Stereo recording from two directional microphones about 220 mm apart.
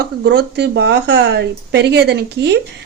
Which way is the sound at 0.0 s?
50° right (ahead or behind).